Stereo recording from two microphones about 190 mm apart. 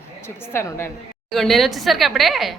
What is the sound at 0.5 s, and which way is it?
Speech, 15° left (ahead or behind).